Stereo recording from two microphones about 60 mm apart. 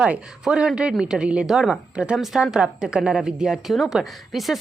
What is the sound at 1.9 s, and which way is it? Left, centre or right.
A woman's voice, centre.